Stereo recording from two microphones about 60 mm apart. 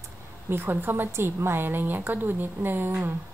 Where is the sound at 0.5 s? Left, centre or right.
Right.